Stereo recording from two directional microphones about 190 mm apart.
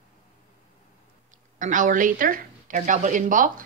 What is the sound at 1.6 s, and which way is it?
A woman's voice, 40° right (ahead or behind).